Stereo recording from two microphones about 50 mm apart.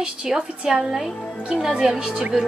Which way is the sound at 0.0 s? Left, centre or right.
Centre.